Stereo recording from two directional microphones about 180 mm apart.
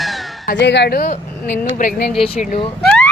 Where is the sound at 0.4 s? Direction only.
70° left (ahead or behind).